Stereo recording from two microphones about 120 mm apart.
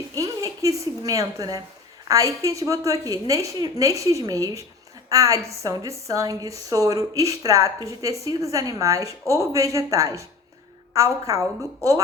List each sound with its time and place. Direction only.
0.2 s a woman's voice: 25° right (ahead or behind)